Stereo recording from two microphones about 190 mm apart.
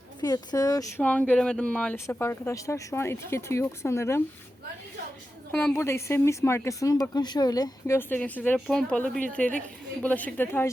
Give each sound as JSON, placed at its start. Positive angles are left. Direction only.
{"t": 0.2, "sound": "speech", "side_deg": 20}
{"t": 1.0, "sound": "speech", "side_deg": 5}
{"t": 5.5, "sound": "speech", "side_deg": 10}